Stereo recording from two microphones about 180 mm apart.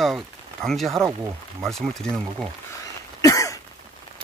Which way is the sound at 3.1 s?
20° left (ahead or behind).